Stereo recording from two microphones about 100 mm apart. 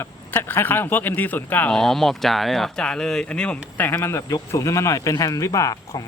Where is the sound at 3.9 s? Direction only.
25° left (ahead or behind).